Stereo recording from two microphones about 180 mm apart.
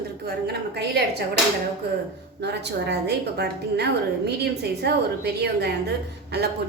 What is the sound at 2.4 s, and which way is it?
A woman's voice, 70° right (ahead or behind).